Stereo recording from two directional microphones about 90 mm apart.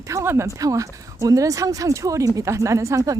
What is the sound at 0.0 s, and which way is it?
A woman's voice, 35° right (ahead or behind).